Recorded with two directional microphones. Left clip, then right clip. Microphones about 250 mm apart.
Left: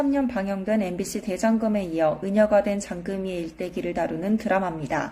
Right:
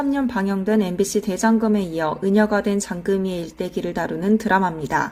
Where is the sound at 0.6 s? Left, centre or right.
Right.